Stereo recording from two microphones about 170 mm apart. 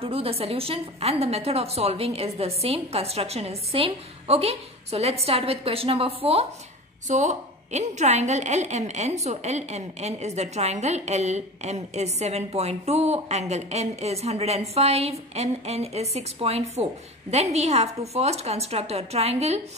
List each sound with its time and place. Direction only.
0.0 s a woman's voice: 35° right (ahead or behind)